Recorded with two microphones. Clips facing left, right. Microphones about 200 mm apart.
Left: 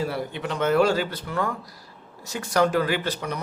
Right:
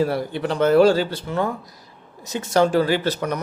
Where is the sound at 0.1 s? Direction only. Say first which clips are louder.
Right 5 dB; 35° right (ahead or behind).